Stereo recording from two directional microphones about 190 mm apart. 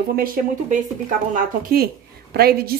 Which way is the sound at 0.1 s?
50° right (ahead or behind).